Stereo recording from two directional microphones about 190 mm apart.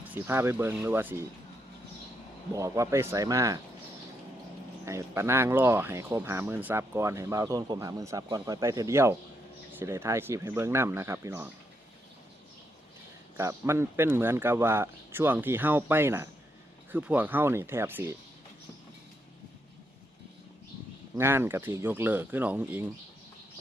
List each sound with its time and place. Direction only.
0.0 s speech: 10° right (ahead or behind)
2.5 s speech: 15° right (ahead or behind)
4.9 s speech: 15° right (ahead or behind)
13.3 s speech: 15° right (ahead or behind)
21.2 s speech: 10° right (ahead or behind)